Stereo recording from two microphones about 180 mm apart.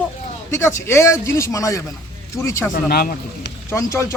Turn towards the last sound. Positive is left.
turn(degrees=15)  # may be behind; listen again after turning